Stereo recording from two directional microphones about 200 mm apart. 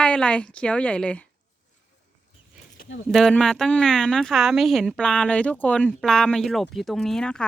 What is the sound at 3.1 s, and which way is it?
Speech, centre (ahead or behind).